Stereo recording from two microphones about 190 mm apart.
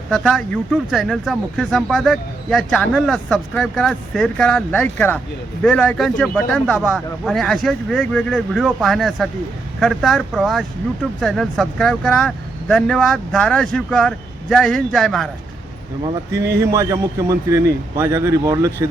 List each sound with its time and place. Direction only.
0.1 s speech: 5° left (ahead or behind)
16.0 s a man's voice: 15° right (ahead or behind)